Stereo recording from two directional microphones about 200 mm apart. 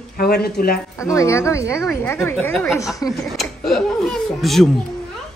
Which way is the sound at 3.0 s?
20° left (ahead or behind).